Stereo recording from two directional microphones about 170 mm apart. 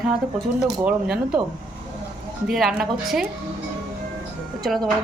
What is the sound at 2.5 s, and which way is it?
Speech, centre (ahead or behind).